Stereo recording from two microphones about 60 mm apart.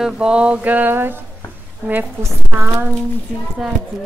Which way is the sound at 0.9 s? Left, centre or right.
Right.